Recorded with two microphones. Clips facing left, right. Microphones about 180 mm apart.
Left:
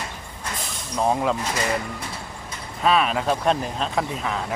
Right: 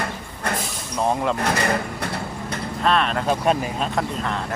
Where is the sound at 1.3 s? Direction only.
65° right (ahead or behind).